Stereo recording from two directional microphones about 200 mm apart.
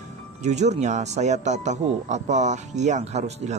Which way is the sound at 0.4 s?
35° right (ahead or behind).